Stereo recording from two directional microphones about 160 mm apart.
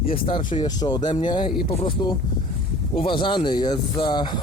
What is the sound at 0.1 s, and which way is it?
Speech, 35° left (ahead or behind).